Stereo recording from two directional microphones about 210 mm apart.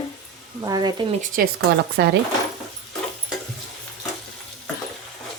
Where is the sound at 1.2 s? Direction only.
40° right (ahead or behind).